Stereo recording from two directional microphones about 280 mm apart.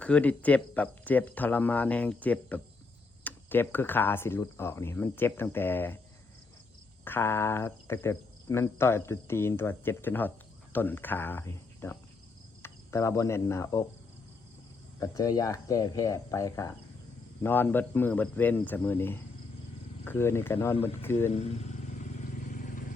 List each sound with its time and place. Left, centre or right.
0.0 s speech: centre
7.0 s speech: centre
12.6 s cricket: centre
14.9 s speech: centre
21.2 s speech: left
22.5 s vehicle: left